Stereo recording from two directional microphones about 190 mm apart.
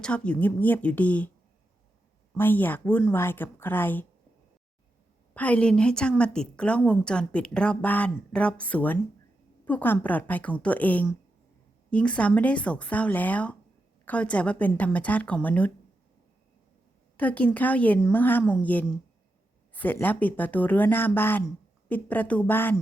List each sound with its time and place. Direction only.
0.0 s speech: 5° left (ahead or behind)
2.4 s speech: 10° left (ahead or behind)
5.3 s speech: 5° left (ahead or behind)
17.2 s speech: 5° left (ahead or behind)